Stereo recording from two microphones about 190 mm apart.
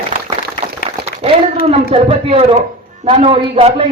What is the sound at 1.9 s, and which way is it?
A man's voice, 30° right (ahead or behind).